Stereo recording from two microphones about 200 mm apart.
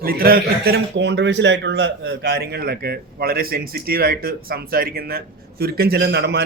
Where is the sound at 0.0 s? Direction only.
50° right (ahead or behind).